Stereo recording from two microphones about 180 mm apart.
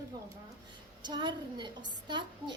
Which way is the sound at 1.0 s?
25° right (ahead or behind).